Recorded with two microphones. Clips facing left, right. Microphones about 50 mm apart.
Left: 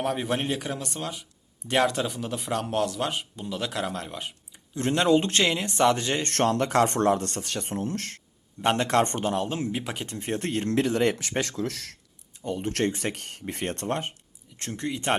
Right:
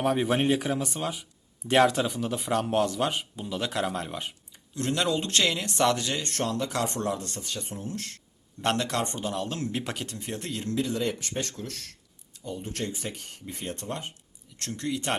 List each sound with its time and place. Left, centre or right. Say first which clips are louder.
0.0 s speech: right 3 dB; centre
4.7 s speech: left 5 dB; left
6.2 s speech: left 6 dB; left
9.5 s speech: left 3 dB; centre
9.7 s speech: even; centre
10.2 s speech: left 6 dB; left
10.8 s speech: left 5 dB; left
12.5 s speech: left 7 dB; left
14.6 s speech: left 1 dB; left